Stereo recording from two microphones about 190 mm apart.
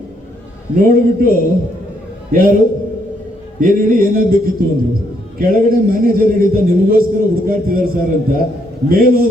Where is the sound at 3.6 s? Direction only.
50° right (ahead or behind).